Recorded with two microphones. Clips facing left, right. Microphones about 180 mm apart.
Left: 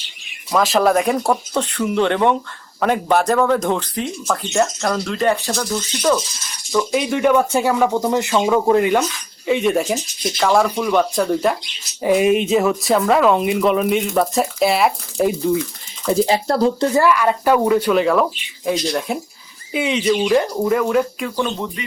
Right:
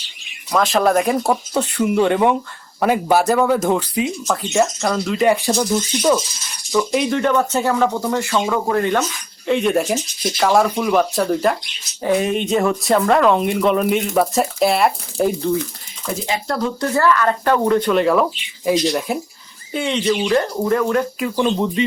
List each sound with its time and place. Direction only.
0.5 s speech: centre (ahead or behind); by 6.1 s 15° right (ahead or behind)
6.7 s speech: centre (ahead or behind)
9.5 s speech: centre (ahead or behind)
16.1 s speech: 35° left (ahead or behind)
16.9 s speech: 10° left (ahead or behind)
21.8 s speech: 25° right (ahead or behind)